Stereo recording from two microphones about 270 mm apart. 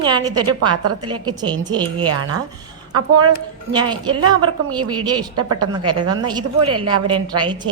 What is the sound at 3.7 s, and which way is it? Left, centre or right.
A woman's voice, centre.